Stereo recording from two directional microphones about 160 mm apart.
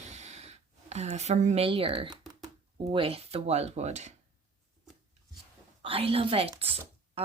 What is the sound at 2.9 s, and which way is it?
Speech, 35° right (ahead or behind).